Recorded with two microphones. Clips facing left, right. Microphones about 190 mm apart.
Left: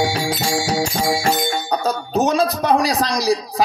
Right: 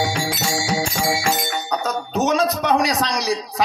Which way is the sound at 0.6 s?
35° left (ahead or behind).